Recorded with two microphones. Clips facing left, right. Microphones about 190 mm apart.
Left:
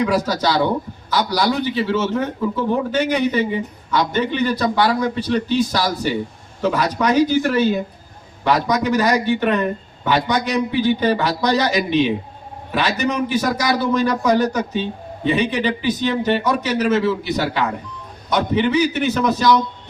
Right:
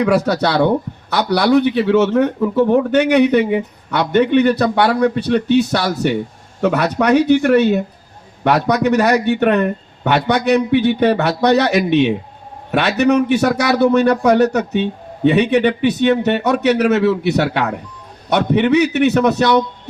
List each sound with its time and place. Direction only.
0.0 s a man's voice: 65° right (ahead or behind)